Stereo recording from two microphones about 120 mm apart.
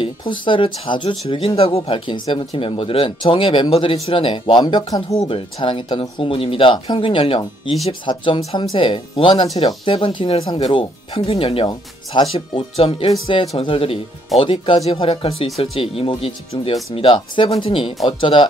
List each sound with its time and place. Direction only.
0.0 s speech: 45° left (ahead or behind)